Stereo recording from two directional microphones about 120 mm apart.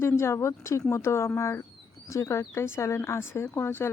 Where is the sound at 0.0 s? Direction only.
20° left (ahead or behind).